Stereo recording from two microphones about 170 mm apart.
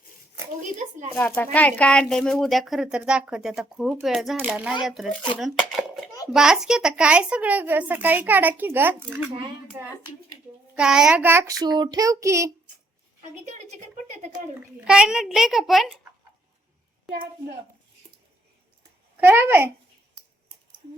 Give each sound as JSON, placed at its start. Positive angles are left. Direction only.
{"t": 0.8, "sound": "speech", "side_deg": -45}
{"t": 1.1, "sound": "speech", "side_deg": 10}
{"t": 10.8, "sound": "speech", "side_deg": -5}
{"t": 13.7, "sound": "speech", "side_deg": -45}
{"t": 14.6, "sound": "speech", "side_deg": -5}
{"t": 19.2, "sound": "speech", "side_deg": -10}